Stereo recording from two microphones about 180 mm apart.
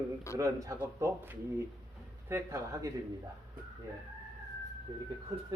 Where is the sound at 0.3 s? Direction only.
15° right (ahead or behind).